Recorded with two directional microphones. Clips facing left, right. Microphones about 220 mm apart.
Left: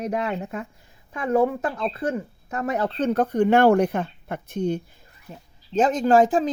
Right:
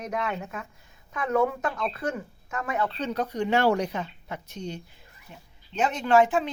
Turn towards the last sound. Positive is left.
turn(degrees=35)  # may be behind; listen again after turning